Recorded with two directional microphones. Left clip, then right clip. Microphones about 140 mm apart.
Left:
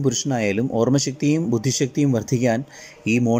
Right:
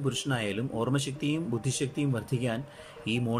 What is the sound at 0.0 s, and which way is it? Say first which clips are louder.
Speech: left 9 dB; 35° left (ahead or behind).